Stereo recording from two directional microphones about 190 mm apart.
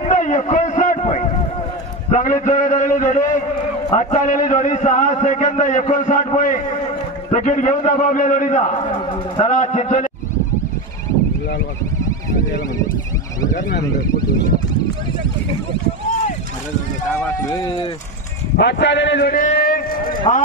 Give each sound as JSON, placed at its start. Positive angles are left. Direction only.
{"t": 0.0, "sound": "a sound", "side_deg": 40}
{"t": 2.0, "sound": "a man's voice", "side_deg": 40}
{"t": 17.1, "sound": "speech", "side_deg": 15}
{"t": 18.6, "sound": "a man's voice", "side_deg": 65}
{"t": 20.3, "sound": "a man's voice", "side_deg": 35}